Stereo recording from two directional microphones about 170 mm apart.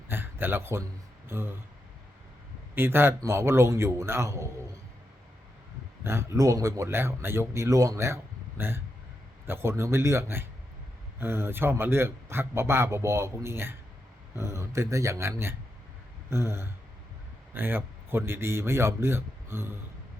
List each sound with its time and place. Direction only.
0.1 s a sound: 10° right (ahead or behind)
1.3 s speech: 15° right (ahead or behind)
2.7 s speech: 15° right (ahead or behind)
6.0 s speech: 15° right (ahead or behind)